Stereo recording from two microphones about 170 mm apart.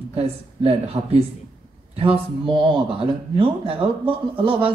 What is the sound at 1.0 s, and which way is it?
Speech, 30° right (ahead or behind).